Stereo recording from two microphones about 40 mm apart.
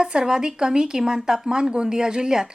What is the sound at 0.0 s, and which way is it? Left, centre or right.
Speech, centre.